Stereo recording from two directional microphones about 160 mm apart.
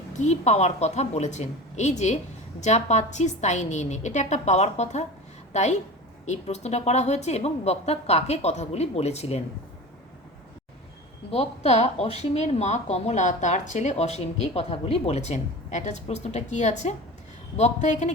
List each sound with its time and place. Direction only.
0.1 s speech: 45° left (ahead or behind)
11.3 s speech: 40° left (ahead or behind)